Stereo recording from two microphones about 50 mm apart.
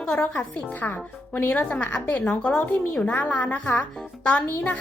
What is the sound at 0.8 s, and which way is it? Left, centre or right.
Speech, left.